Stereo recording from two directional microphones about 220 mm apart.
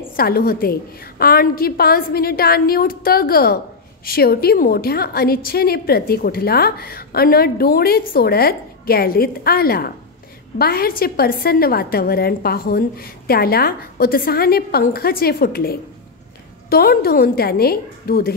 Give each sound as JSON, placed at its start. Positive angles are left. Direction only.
{"t": 0.1, "sound": "a woman's voice", "side_deg": 45}